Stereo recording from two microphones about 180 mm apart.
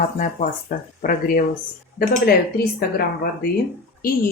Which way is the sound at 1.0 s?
50° left (ahead or behind).